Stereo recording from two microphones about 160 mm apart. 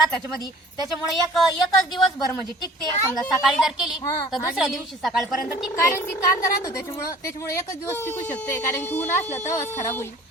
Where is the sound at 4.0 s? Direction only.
20° left (ahead or behind).